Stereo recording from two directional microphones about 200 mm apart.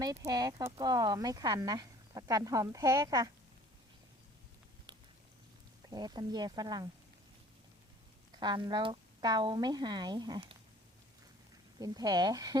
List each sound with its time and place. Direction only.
0.3 s speech: 20° right (ahead or behind)
5.9 s speech: 20° right (ahead or behind)
8.3 s speech: 20° right (ahead or behind)
11.8 s speech: 20° right (ahead or behind)